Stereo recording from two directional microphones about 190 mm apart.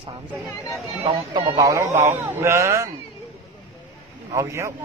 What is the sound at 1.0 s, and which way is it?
Speech, 30° right (ahead or behind).